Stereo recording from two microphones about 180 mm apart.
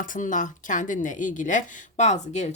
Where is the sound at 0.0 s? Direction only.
45° left (ahead or behind).